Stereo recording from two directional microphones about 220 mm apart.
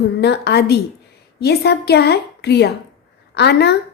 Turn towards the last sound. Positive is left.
turn(degrees=50)  # may be behind; listen again after turning